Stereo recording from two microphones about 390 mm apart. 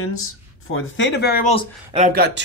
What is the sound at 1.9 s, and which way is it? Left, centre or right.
Speech, centre.